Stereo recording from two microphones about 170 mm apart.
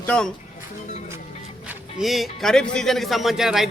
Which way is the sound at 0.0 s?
5° left (ahead or behind).